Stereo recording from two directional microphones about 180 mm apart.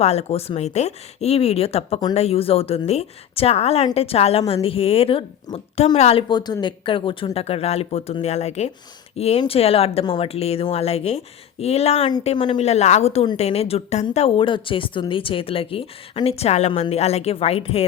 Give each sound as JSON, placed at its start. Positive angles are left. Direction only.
{"t": 0.0, "sound": "speech", "side_deg": 35}